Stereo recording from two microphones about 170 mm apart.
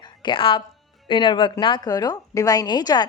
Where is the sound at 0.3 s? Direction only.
30° left (ahead or behind).